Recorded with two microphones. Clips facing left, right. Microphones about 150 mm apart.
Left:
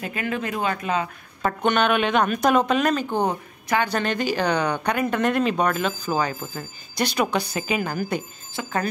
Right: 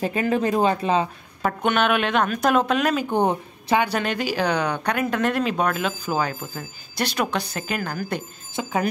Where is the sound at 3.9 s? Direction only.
5° right (ahead or behind).